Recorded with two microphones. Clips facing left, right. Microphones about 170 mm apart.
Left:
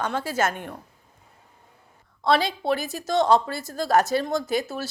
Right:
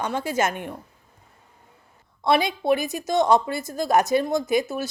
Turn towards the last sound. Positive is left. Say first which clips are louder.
# right 3 dB
turn(degrees=-15)  # may be behind; listen again after turning